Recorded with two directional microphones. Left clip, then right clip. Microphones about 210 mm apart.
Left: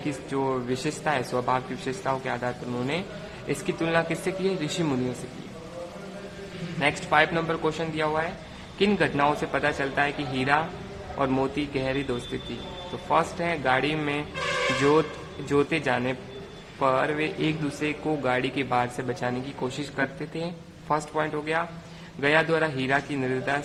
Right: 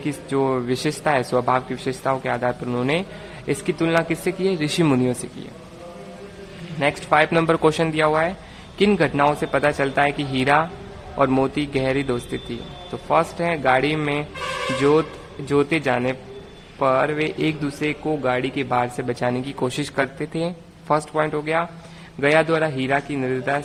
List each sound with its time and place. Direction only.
0.0 s a man's voice: 30° right (ahead or behind)
7.1 s a man's voice: 30° right (ahead or behind)
8.8 s a man's voice: 30° right (ahead or behind)
14.7 s a man's voice: 15° right (ahead or behind)